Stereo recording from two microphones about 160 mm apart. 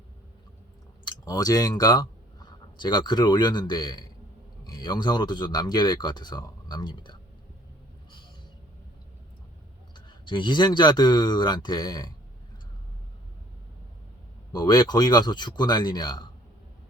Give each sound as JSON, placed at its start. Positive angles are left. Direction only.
{"t": 1.0, "sound": "speech", "side_deg": 25}
{"t": 9.9, "sound": "speech", "side_deg": 30}
{"t": 14.5, "sound": "speech", "side_deg": 25}